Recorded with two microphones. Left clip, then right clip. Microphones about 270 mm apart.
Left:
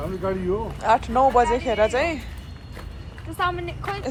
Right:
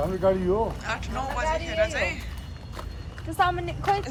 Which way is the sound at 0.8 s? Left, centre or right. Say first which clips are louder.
Left 13 dB; centre.